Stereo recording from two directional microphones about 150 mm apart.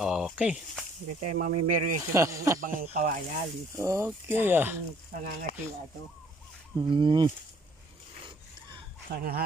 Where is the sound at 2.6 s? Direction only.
65° right (ahead or behind).